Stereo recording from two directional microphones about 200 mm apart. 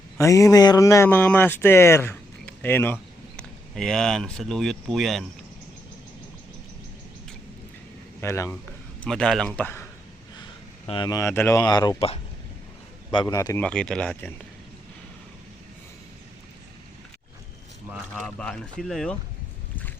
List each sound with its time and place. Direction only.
0.2 s speech: 15° left (ahead or behind)
8.2 s speech: 15° left (ahead or behind)
9.0 s speech: 5° left (ahead or behind)
10.8 s speech: 20° left (ahead or behind)
13.7 s speech: 5° left (ahead or behind)
18.1 s speech: 5° left (ahead or behind)